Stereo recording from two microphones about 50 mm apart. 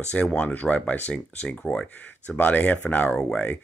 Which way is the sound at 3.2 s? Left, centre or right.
Centre.